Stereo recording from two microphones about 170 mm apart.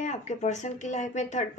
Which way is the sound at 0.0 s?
40° left (ahead or behind).